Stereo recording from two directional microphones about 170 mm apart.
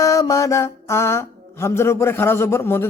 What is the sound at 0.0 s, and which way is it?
Mantra, 20° left (ahead or behind).